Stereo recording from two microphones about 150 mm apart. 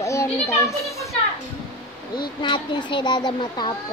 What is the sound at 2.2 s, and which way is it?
Speech, 30° left (ahead or behind).